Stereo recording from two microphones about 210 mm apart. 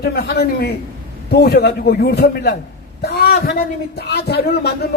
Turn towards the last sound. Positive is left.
turn(degrees=50)  # may be behind; listen again after turning